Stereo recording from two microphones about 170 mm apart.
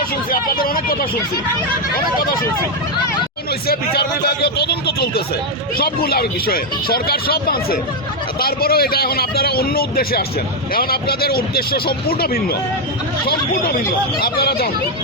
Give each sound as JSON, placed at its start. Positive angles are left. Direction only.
{"t": 0.3, "sound": "speech", "side_deg": 60}
{"t": 4.4, "sound": "speech", "side_deg": 70}
{"t": 14.2, "sound": "speech", "side_deg": 65}